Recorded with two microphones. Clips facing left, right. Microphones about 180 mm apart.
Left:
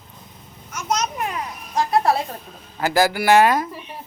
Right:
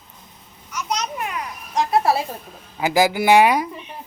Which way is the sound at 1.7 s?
Centre (ahead or behind).